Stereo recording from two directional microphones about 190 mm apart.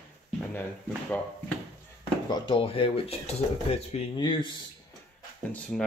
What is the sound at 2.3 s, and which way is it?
Speech, 25° left (ahead or behind).